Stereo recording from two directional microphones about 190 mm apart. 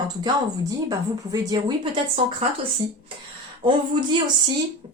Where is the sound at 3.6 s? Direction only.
25° right (ahead or behind).